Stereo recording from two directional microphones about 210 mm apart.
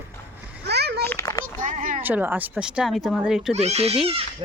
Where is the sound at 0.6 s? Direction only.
50° right (ahead or behind).